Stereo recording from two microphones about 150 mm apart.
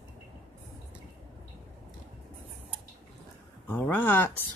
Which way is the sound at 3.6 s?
15° left (ahead or behind).